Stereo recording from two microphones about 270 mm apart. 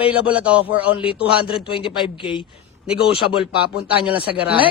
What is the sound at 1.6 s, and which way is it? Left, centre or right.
Speech, centre.